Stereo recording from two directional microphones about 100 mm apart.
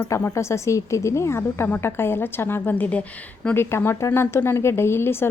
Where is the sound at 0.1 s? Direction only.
25° left (ahead or behind).